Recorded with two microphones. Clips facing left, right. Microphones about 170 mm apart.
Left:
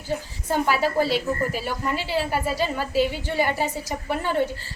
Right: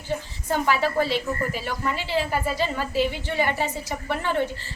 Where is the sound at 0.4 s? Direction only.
10° left (ahead or behind).